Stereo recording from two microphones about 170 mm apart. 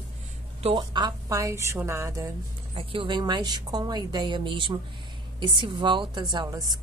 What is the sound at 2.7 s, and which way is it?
A woman's voice, 30° right (ahead or behind).